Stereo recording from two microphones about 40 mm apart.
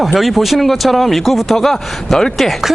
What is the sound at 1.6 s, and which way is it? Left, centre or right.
Speech, centre.